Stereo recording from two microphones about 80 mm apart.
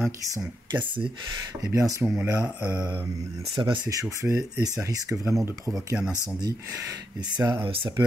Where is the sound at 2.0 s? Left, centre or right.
Centre.